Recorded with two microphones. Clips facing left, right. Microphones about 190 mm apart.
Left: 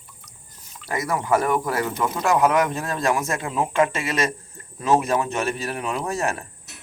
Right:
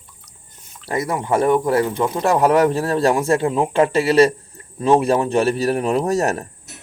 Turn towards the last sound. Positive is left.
turn(degrees=-40)  # may be behind; listen again after turning